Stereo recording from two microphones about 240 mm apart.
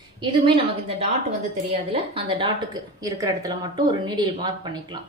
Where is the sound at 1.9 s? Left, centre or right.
Right.